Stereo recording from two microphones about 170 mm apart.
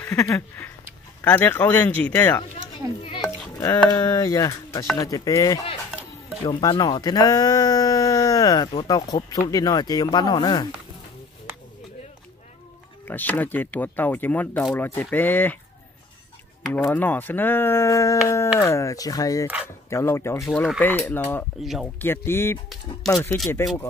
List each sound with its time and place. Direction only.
0.0 s speech: 15° left (ahead or behind)
3.5 s speech: 25° left (ahead or behind)
13.0 s speech: 10° left (ahead or behind)
16.6 s speech: 10° left (ahead or behind)
20.4 s speech: centre (ahead or behind)
20.8 s speech: 10° left (ahead or behind)
21.5 s speech: centre (ahead or behind)
21.9 s speech: 15° left (ahead or behind)
23.1 s speech: 5° left (ahead or behind)